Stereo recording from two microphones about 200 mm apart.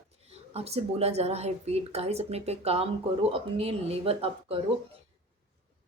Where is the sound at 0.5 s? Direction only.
30° right (ahead or behind).